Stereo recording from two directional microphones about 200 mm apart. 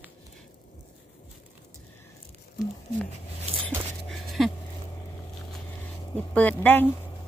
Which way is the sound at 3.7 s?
Centre (ahead or behind).